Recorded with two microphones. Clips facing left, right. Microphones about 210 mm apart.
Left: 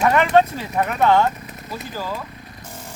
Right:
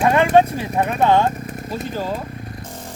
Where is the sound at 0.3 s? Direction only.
20° right (ahead or behind).